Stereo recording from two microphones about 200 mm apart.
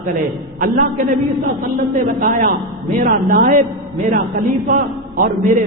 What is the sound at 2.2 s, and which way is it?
A woman's voice, 45° right (ahead or behind).